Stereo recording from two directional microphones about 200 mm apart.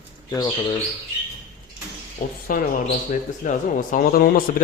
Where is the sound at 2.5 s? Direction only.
45° left (ahead or behind).